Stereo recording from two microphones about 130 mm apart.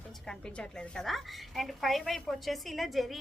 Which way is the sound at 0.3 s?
5° left (ahead or behind).